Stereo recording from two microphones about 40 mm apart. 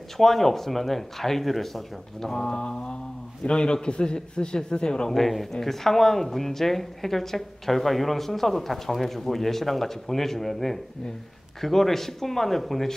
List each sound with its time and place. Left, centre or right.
0.2 s a woman's voice: centre; by 5.1 s left
5.1 s a woman's voice: centre